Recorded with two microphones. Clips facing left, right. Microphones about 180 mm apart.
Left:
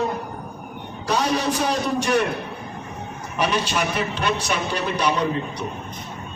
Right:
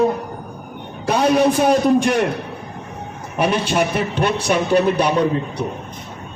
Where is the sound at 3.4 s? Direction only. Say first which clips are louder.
Right 5 dB; 55° right (ahead or behind).